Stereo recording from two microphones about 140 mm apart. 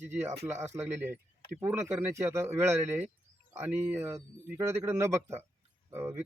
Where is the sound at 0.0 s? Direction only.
15° right (ahead or behind).